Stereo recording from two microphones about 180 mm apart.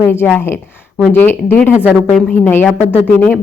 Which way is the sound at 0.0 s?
10° left (ahead or behind).